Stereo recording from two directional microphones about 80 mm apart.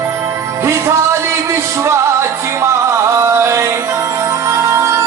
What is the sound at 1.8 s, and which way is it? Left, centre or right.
Music, right.